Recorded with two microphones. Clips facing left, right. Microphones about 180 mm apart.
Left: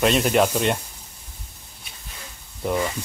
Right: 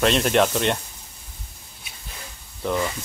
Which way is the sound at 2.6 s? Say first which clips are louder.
Left 1 dB; 10° left (ahead or behind).